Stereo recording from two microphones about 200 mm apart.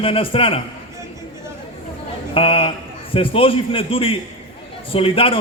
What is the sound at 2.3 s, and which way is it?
A man's voice, 25° left (ahead or behind).